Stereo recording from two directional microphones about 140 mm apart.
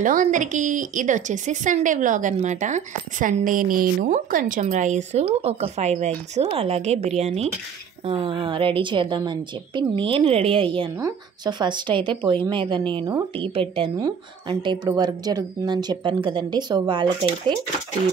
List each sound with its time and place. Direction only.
0.0 s a woman's voice: 65° right (ahead or behind)
4.6 s speech: 60° right (ahead or behind)
8.1 s a woman's voice: 35° right (ahead or behind)
11.0 s speech: 20° right (ahead or behind)
11.6 s a woman's voice: 35° right (ahead or behind)